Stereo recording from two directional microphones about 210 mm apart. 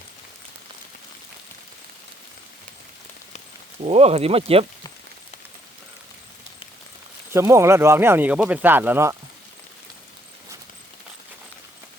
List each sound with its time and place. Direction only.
3.8 s speech: 30° right (ahead or behind)
7.3 s speech: 15° right (ahead or behind)